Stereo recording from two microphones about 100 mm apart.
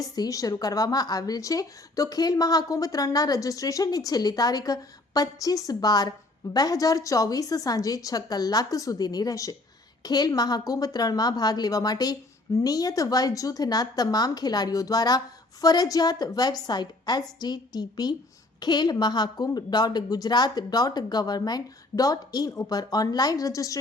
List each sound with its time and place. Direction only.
0.0 s a woman's voice: 35° left (ahead or behind)